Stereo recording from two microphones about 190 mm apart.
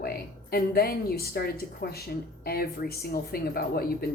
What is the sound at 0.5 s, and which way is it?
A woman's voice, 55° left (ahead or behind).